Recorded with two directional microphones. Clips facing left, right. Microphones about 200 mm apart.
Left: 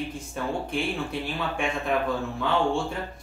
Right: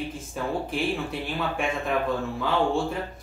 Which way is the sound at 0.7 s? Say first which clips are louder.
Right 1 dB; centre (ahead or behind).